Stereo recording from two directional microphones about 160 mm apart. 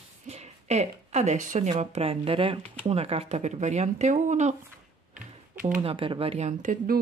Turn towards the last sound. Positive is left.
turn(degrees=-55)  # may be behind; listen again after turning